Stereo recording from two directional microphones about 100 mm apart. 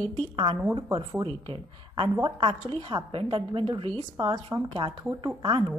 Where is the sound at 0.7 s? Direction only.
50° right (ahead or behind).